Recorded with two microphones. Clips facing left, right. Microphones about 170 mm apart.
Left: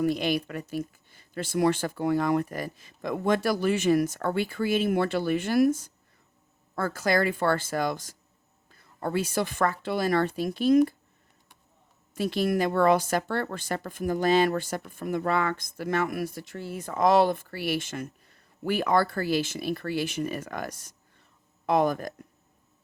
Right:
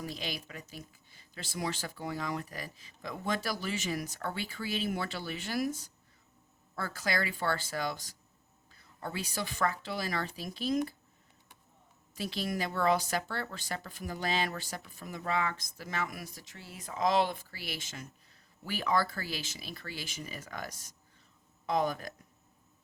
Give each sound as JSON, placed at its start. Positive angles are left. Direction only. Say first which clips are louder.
{"t": 0.0, "sound": "speech", "louder": "left 14 dB", "side_deg": 55}
{"t": 12.1, "sound": "speech", "louder": "left 10 dB", "side_deg": 50}